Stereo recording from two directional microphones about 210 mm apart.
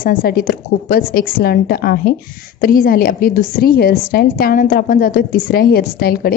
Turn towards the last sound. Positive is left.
turn(degrees=45)  # may be behind; listen again after turning